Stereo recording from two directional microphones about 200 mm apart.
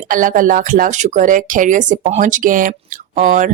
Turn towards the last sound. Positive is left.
turn(degrees=-40)  # may be behind; listen again after turning